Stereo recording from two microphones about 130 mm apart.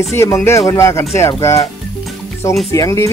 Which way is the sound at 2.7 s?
25° left (ahead or behind).